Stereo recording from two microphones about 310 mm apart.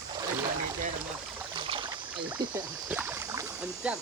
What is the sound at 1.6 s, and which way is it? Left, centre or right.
Boat, centre.